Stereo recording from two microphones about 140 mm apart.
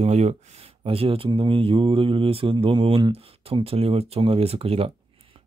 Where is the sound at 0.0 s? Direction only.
55° right (ahead or behind).